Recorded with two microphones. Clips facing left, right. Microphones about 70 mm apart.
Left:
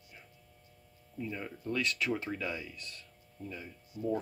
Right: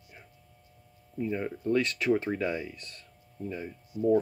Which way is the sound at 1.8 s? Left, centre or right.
Right.